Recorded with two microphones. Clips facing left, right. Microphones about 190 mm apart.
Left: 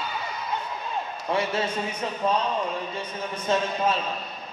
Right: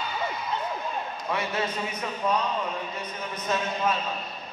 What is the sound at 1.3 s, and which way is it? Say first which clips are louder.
Speech: left 4 dB; 30° left (ahead or behind).